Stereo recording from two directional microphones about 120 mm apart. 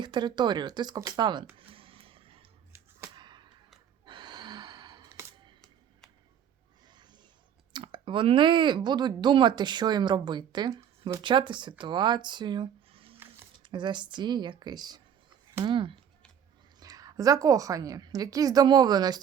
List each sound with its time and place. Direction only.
0.0 s speech: 40° right (ahead or behind)
1.5 s music: 50° right (ahead or behind)
3.2 s a sound: 40° right (ahead or behind)
4.0 s gasp: 40° right (ahead or behind)
6.8 s a sound: 40° right (ahead or behind)
7.7 s speech: 40° right (ahead or behind)
16.8 s speech: 30° right (ahead or behind)